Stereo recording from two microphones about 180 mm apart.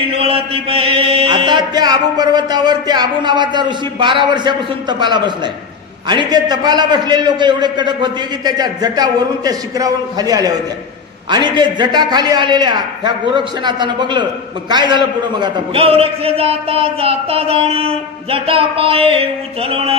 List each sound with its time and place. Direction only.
0.0 s mantra: 30° right (ahead or behind)
6.0 s a man's voice: 25° right (ahead or behind)